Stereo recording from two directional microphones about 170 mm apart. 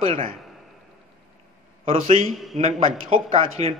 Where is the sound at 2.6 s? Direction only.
35° right (ahead or behind).